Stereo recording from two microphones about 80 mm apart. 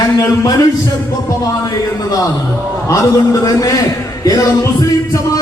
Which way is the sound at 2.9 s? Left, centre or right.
Left.